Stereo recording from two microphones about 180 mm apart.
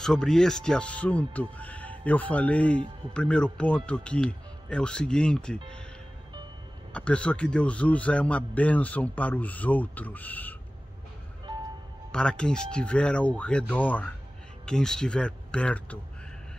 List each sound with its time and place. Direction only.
0.0 s a man's voice: centre (ahead or behind)
6.9 s a man's voice: 5° left (ahead or behind)
12.1 s speech: 5° left (ahead or behind)